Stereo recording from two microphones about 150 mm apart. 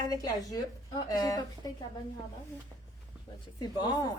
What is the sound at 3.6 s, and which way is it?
Speech, 30° left (ahead or behind).